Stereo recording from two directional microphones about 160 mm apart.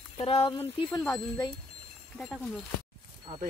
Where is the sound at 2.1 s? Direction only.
5° left (ahead or behind).